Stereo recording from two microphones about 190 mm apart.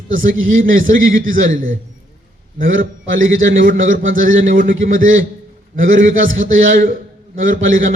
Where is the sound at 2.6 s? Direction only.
90° right.